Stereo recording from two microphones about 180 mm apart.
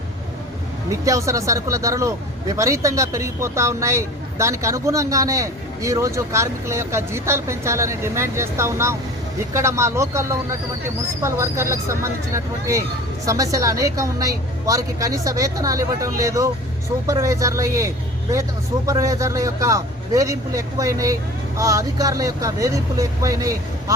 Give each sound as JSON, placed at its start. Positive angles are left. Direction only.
{"t": 0.9, "sound": "a man's voice", "side_deg": -15}